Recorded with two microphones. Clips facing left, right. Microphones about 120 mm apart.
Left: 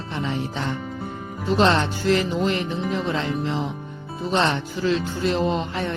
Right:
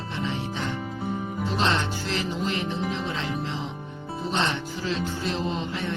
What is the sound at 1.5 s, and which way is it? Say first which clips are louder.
Music: left 7 dB; 45° left (ahead or behind).